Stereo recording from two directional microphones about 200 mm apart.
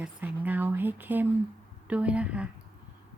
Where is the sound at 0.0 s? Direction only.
10° right (ahead or behind).